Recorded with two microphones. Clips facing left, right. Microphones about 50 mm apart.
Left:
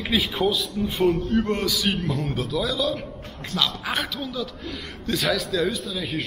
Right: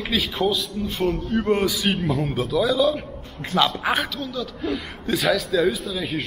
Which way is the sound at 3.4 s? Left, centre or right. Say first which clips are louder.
Right 6 dB; right.